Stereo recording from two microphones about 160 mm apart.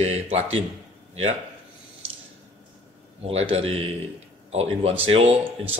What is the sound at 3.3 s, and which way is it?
Speech, 40° right (ahead or behind).